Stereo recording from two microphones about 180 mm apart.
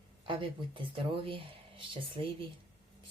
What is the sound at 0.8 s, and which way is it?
Speech, 30° right (ahead or behind).